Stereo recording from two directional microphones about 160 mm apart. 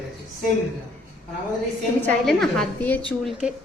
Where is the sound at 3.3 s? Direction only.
5° right (ahead or behind).